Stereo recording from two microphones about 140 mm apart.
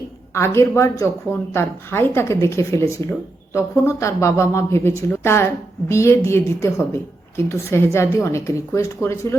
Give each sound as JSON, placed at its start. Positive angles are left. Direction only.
{"t": 0.3, "sound": "a woman's voice", "side_deg": 20}